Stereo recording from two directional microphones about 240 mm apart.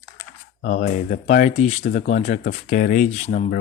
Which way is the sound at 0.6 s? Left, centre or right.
Left.